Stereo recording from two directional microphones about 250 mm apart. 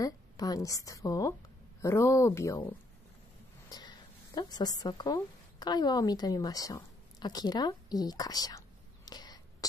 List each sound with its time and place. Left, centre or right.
0.0 s a woman's voice: centre
3.7 s a woman's voice: centre